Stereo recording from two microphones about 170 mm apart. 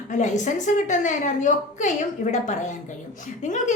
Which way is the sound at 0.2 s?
45° left (ahead or behind).